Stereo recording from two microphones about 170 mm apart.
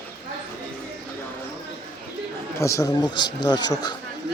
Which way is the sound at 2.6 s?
20° left (ahead or behind).